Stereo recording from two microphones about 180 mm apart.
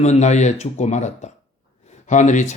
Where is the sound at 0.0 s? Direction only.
40° left (ahead or behind).